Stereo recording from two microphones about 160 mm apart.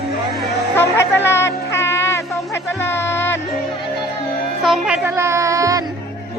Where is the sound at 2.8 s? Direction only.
15° left (ahead or behind).